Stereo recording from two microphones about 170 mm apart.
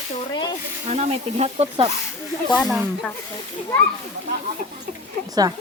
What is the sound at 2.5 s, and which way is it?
Speech, 5° left (ahead or behind).